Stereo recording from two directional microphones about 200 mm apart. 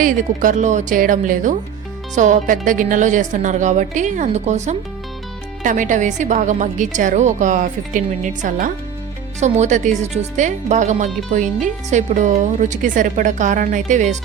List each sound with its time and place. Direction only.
0.0 s a woman's voice: 40° right (ahead or behind)